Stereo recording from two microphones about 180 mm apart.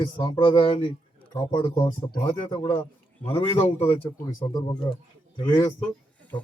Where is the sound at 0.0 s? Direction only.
25° left (ahead or behind).